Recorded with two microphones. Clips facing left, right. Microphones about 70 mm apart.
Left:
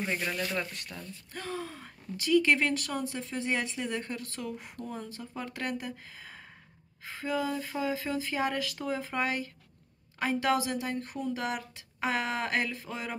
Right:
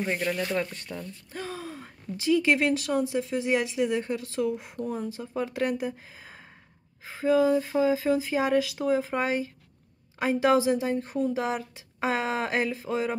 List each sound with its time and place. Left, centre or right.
0.4 s a woman's voice: right
0.9 s a woman's voice: centre